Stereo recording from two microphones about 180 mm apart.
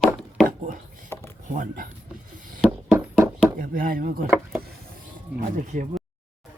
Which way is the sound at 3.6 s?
50° right (ahead or behind).